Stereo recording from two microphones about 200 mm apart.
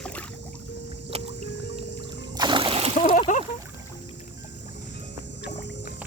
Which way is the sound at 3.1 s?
40° left (ahead or behind).